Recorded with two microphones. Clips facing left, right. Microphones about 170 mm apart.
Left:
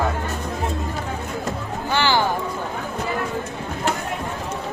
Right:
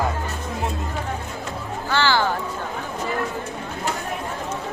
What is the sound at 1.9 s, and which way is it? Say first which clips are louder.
Music: left 1 dB; 15° left (ahead or behind).